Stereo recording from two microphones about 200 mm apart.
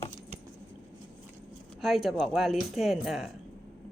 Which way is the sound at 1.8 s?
Centre (ahead or behind).